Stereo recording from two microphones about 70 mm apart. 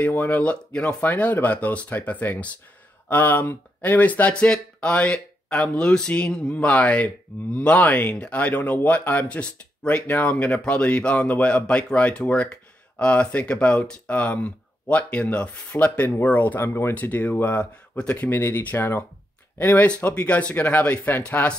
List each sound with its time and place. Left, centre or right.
0.0 s speech: left
16.9 s speech: left
20.1 s speech: centre